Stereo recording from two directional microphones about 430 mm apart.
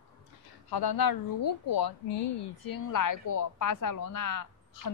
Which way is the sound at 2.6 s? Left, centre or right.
Left.